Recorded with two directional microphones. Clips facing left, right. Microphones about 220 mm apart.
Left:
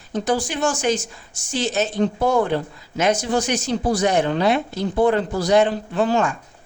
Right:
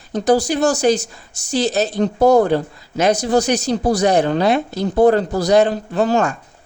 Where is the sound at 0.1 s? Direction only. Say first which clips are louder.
Right 6 dB; 40° right (ahead or behind).